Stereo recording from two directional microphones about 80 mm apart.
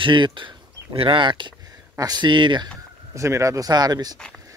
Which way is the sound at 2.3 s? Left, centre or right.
Right.